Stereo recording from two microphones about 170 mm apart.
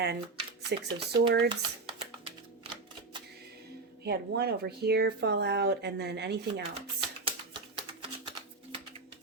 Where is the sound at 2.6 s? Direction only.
35° right (ahead or behind).